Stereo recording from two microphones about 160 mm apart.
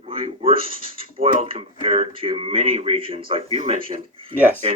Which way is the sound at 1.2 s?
40° right (ahead or behind).